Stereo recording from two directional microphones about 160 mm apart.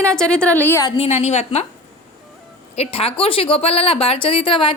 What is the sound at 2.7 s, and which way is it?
A woman's voice, 35° left (ahead or behind).